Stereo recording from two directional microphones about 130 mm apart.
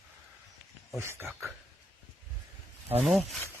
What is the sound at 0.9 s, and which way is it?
Speech, 20° right (ahead or behind).